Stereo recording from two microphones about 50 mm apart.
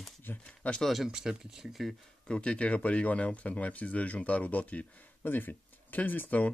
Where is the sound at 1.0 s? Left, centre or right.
Centre.